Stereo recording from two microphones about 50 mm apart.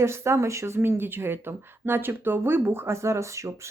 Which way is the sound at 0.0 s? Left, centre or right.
Right.